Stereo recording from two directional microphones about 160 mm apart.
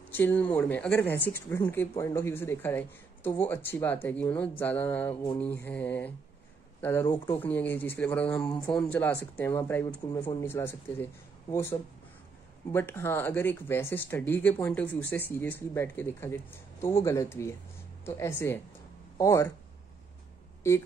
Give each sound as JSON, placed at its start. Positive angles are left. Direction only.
{"t": 0.1, "sound": "speech", "side_deg": 10}
{"t": 12.7, "sound": "speech", "side_deg": 15}
{"t": 20.6, "sound": "speech", "side_deg": 15}